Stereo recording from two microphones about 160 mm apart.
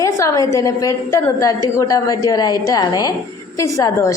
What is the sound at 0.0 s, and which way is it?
A woman's voice, 20° left (ahead or behind).